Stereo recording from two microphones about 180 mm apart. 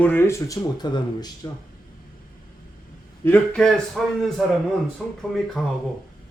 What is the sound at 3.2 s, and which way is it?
Speech, 10° left (ahead or behind).